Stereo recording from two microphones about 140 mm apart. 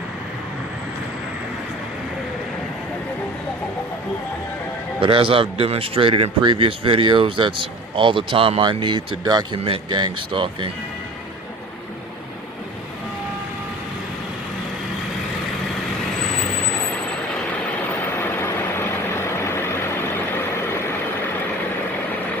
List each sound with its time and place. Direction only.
4.9 s speech: 40° right (ahead or behind)
18.2 s vehicle: 15° left (ahead or behind)